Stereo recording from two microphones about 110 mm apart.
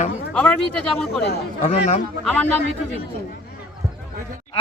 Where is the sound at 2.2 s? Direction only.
10° left (ahead or behind).